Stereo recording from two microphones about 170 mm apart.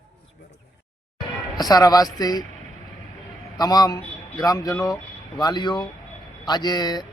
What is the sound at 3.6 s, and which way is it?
Speech, 25° left (ahead or behind).